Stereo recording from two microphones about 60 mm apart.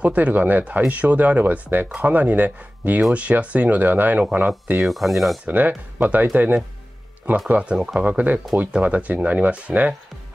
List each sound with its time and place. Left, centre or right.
0.0 s speech: right
4.8 s speech: centre
5.4 s speech: right